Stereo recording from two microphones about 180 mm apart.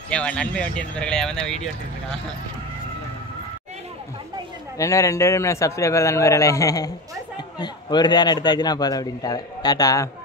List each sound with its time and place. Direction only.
0.1 s speech: 5° left (ahead or behind)
4.7 s a man's voice: 15° left (ahead or behind)